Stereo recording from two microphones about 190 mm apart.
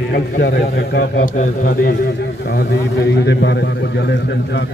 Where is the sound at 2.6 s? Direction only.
65° left (ahead or behind).